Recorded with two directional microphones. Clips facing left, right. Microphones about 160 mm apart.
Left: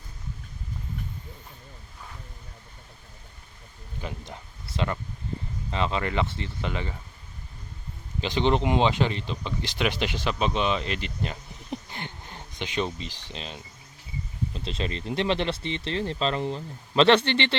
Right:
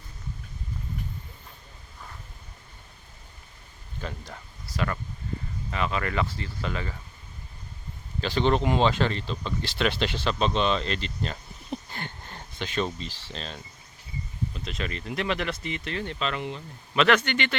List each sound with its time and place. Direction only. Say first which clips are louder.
4.0 s speech: even; 20° left (ahead or behind)
8.2 s speech: even; 20° left (ahead or behind)
14.5 s speech: left 4 dB; 30° left (ahead or behind)